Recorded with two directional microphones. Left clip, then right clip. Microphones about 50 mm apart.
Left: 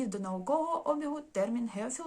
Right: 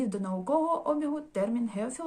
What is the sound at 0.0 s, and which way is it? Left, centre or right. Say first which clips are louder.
Speech: right 3 dB; centre.